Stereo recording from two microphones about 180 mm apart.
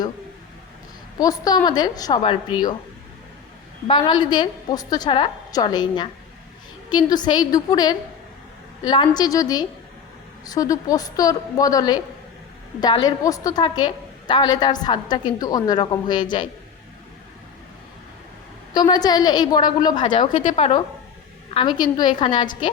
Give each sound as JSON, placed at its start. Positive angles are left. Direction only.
{"t": 1.2, "sound": "a woman's voice", "side_deg": 20}
{"t": 3.8, "sound": "a woman's voice", "side_deg": 25}
{"t": 18.7, "sound": "a woman's voice", "side_deg": 25}
{"t": 20.4, "sound": "a woman's voice", "side_deg": 40}